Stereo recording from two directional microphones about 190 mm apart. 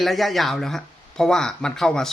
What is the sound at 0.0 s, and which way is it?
Speech, centre (ahead or behind).